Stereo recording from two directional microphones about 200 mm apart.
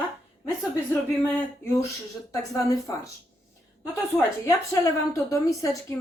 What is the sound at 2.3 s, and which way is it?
Speech, 15° left (ahead or behind).